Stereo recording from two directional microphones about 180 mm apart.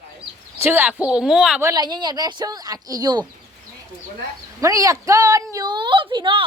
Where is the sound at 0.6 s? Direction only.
10° right (ahead or behind).